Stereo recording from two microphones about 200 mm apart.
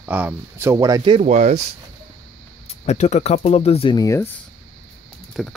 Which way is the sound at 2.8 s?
35° left (ahead or behind).